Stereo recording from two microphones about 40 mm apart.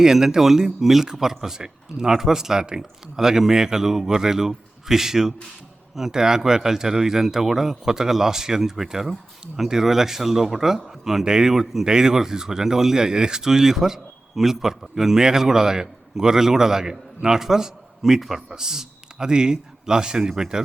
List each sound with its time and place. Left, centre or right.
0.0 s a man's voice: centre